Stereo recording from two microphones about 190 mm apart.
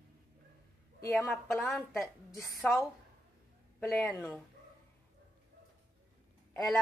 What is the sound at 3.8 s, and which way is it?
Speech, 10° left (ahead or behind).